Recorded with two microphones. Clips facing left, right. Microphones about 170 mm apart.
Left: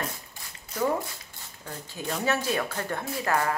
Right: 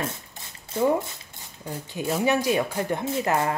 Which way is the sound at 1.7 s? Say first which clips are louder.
Right 6 dB; 10° right (ahead or behind).